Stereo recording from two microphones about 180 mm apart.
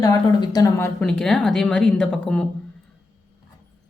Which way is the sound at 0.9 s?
5° left (ahead or behind).